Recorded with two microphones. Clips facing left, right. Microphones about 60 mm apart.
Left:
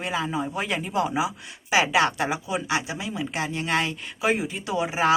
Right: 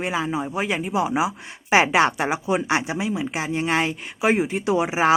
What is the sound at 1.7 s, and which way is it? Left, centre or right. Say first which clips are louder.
Speech: right 4 dB; right.